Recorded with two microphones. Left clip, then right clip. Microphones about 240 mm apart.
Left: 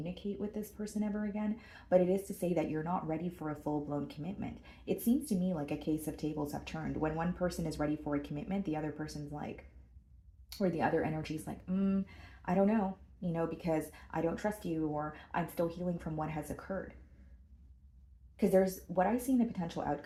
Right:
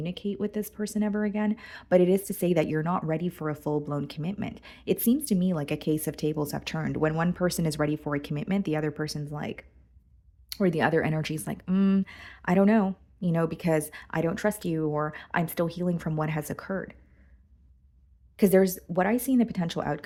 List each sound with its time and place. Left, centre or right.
0.0 s speech: right
18.3 s speech: right